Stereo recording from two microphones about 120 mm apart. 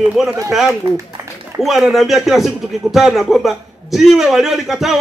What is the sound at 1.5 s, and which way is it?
Speech, 30° right (ahead or behind).